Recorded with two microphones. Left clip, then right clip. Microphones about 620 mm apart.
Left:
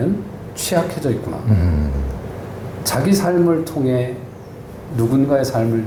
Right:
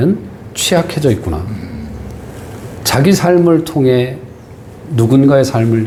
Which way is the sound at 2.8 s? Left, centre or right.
Right.